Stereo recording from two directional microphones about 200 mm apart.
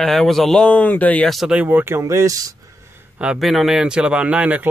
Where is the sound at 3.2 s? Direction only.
Centre (ahead or behind).